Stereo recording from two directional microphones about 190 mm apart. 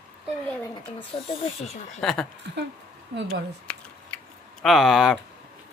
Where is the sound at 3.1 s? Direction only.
60° right (ahead or behind).